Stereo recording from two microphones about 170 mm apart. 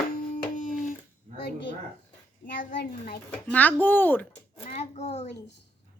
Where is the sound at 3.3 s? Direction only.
10° left (ahead or behind).